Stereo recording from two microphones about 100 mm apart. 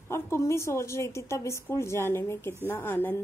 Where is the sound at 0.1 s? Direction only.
25° left (ahead or behind).